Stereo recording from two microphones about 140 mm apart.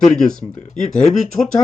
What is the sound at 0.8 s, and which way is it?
Speech, 60° left (ahead or behind).